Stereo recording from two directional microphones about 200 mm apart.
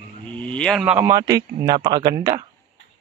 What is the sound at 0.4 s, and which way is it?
Speech, 5° left (ahead or behind).